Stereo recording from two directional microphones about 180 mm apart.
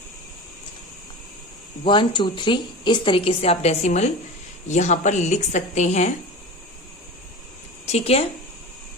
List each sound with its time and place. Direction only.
1.8 s a woman's voice: 25° left (ahead or behind)
7.9 s speech: 35° left (ahead or behind)